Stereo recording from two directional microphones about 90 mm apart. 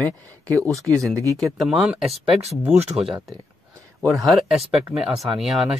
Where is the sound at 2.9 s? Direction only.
5° right (ahead or behind).